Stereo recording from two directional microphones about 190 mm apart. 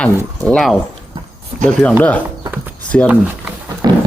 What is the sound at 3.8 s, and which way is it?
Dog, 20° right (ahead or behind).